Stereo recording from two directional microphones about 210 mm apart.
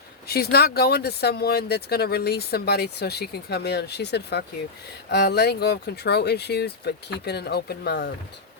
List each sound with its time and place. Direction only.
0.3 s speech: 50° left (ahead or behind)